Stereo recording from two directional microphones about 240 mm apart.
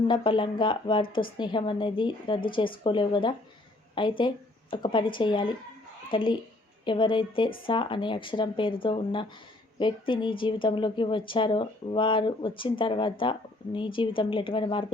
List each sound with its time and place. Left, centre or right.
0.1 s a woman's voice: centre